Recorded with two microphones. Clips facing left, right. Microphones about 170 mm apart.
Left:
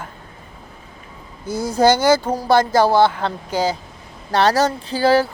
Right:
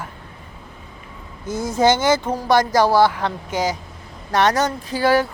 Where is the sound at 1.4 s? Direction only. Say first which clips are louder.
Left 2 dB; 35° left (ahead or behind).